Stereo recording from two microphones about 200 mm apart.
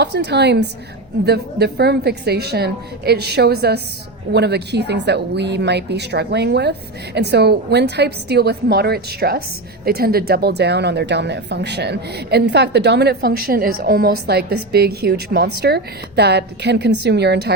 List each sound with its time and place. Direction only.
0.0 s a woman's voice: 55° right (ahead or behind)